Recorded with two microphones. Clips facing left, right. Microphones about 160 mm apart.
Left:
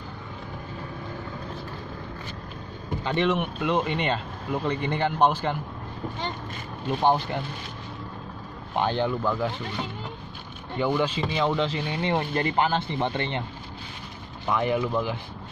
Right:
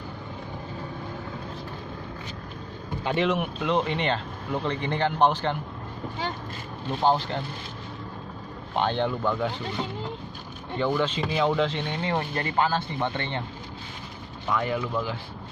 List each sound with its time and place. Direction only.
3.0 s a man's voice: 5° right (ahead or behind)
7.0 s a man's voice: 15° left (ahead or behind)
8.7 s speech: 5° left (ahead or behind)
10.8 s a man's voice: 10° left (ahead or behind)
12.0 s speech: 20° left (ahead or behind)
14.5 s speech: 20° left (ahead or behind)